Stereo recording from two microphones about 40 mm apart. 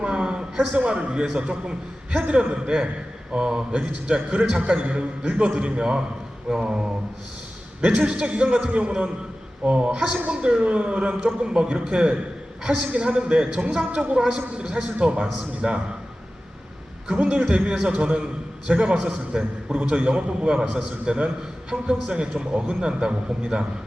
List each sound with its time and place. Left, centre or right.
0.0 s a sound: right
0.7 s a man's voice: right
17.1 s a man's voice: right